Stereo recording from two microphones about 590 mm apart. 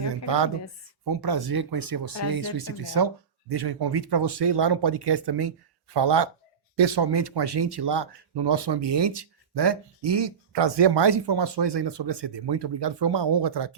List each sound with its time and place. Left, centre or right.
0.3 s speech: right